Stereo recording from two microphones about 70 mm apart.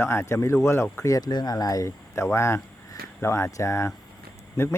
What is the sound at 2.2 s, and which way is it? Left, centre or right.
Speech, left.